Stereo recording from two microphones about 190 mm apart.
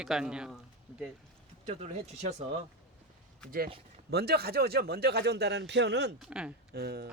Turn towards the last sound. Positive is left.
turn(degrees=-55)  # may be behind; listen again after turning